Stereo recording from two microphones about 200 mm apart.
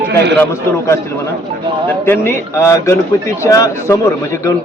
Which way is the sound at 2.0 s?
10° left (ahead or behind).